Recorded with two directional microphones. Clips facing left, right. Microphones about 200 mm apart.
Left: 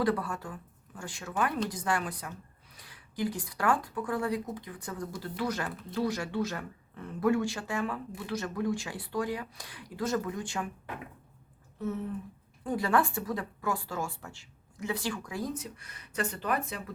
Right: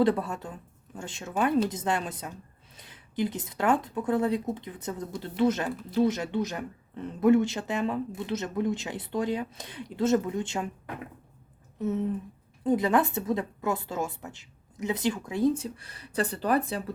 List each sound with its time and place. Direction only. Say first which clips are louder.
0.0 s speech: right 5 dB; 25° right (ahead or behind)
11.8 s speech: right 5 dB; 20° right (ahead or behind)